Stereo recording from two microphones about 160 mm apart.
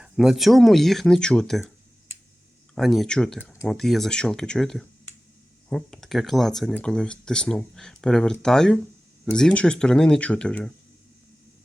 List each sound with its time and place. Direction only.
0.0 s speech: 5° right (ahead or behind)
2.7 s speech: centre (ahead or behind)